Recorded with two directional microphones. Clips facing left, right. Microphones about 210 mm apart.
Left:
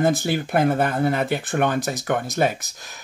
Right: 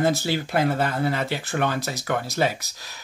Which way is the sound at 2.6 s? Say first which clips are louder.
Left 2 dB; 50° left (ahead or behind).